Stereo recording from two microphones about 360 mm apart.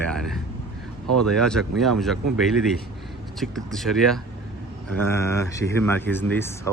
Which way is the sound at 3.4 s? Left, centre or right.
Centre.